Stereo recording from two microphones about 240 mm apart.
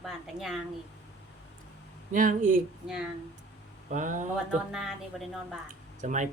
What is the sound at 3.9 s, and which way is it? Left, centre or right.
Speech, right.